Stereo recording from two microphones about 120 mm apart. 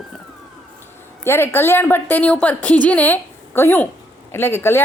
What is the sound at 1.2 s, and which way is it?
A woman's voice, 20° left (ahead or behind).